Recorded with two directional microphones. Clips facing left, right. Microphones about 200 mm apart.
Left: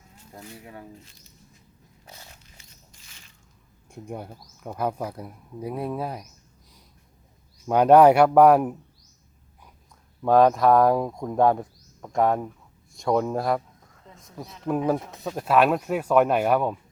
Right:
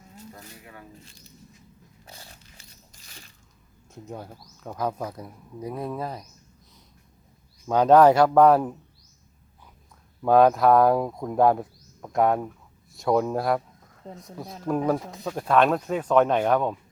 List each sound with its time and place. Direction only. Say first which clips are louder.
2.0 s a sound: even; 30° right (ahead or behind)
3.9 s speech: left 2 dB; 10° left (ahead or behind)
7.7 s speech: left 1 dB; 10° left (ahead or behind)
10.2 s speech: even; centre (ahead or behind)